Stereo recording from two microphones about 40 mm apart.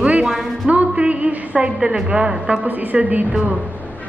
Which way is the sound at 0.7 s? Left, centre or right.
Right.